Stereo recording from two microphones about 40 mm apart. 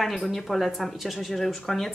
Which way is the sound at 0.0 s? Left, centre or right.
Centre.